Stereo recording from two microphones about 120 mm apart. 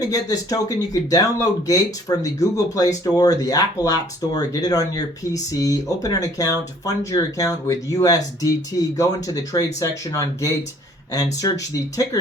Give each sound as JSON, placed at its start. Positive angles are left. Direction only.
{"t": 0.0, "sound": "speech", "side_deg": 30}